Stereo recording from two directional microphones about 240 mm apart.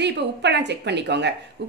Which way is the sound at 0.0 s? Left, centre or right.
Right.